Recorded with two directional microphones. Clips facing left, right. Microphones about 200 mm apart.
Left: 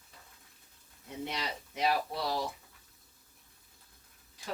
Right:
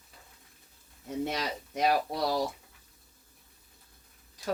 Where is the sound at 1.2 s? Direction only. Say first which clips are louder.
Right 5 dB; 45° right (ahead or behind).